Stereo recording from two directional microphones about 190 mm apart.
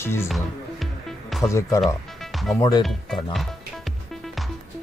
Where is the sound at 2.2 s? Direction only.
Centre (ahead or behind).